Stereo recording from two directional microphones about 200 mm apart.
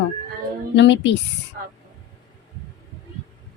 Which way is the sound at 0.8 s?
65° left (ahead or behind).